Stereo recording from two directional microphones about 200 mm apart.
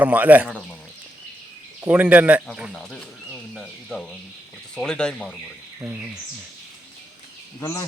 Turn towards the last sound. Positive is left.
turn(degrees=10)  # may be behind; listen again after turning